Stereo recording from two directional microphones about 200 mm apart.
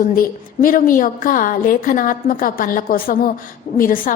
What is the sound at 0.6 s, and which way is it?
A woman's voice, 45° left (ahead or behind).